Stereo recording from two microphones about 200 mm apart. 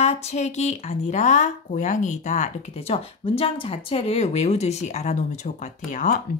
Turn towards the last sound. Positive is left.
turn(degrees=40)  # may be behind; listen again after turning